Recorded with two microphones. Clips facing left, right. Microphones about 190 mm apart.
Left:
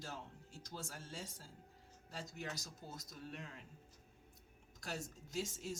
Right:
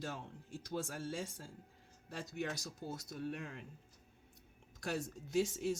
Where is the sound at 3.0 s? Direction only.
55° right (ahead or behind).